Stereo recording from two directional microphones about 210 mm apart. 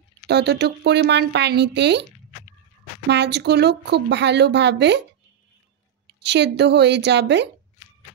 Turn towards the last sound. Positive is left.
turn(degrees=-55)  # may be behind; listen again after turning